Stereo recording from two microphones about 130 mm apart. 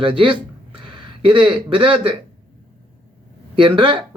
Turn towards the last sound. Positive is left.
turn(degrees=-40)  # may be behind; listen again after turning